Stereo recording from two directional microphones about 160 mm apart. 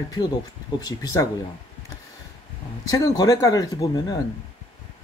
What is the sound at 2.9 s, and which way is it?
Speech, 20° left (ahead or behind).